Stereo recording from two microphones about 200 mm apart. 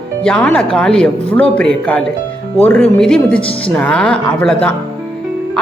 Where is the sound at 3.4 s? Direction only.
25° left (ahead or behind).